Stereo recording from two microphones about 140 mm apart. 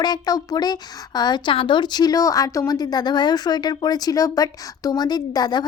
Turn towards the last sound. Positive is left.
turn(degrees=30)  # may be behind; listen again after turning